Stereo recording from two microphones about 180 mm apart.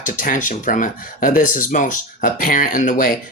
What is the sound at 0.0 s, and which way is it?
Speech, 50° left (ahead or behind).